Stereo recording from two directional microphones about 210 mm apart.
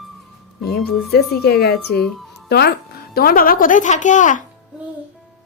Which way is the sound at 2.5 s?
50° left (ahead or behind).